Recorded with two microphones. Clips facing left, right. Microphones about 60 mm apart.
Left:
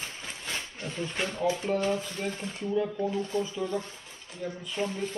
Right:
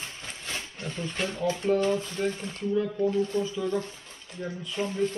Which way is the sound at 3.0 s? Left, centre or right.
Centre.